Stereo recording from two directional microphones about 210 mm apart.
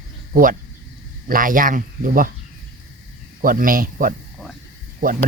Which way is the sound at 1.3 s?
40° right (ahead or behind).